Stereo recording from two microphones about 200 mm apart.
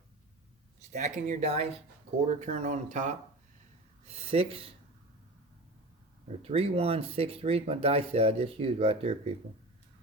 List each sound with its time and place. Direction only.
0.9 s speech: 35° right (ahead or behind)
6.4 s speech: 30° right (ahead or behind)